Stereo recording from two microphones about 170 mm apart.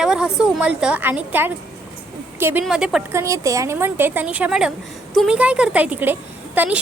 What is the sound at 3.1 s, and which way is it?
A woman's voice, 15° right (ahead or behind).